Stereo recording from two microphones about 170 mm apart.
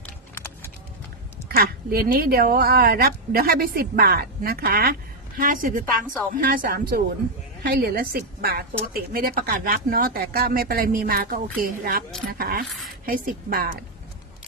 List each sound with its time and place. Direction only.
0.0 s music: 15° left (ahead or behind)
1.5 s a woman's voice: 60° right (ahead or behind)